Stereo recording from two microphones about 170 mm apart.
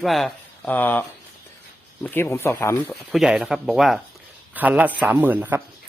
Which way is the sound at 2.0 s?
10° left (ahead or behind).